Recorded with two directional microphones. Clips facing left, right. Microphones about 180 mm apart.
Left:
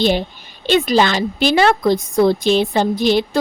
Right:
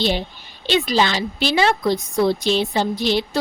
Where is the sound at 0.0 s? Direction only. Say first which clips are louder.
Left 5 dB; 50° left (ahead or behind).